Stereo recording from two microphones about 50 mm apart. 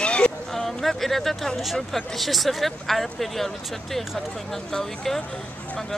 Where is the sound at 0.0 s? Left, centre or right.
Left.